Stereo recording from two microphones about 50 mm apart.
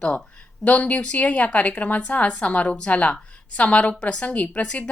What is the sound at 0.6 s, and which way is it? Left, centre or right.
Speech, left.